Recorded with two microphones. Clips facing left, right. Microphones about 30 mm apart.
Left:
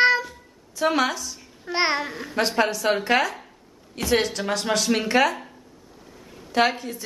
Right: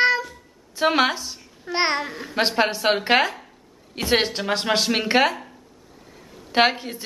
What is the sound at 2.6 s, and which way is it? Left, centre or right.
Speech, right.